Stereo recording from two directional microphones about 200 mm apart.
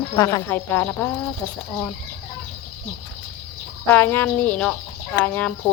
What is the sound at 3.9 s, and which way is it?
Speech, 10° left (ahead or behind).